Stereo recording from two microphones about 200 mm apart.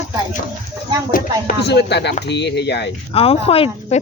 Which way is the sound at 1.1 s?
50° left (ahead or behind).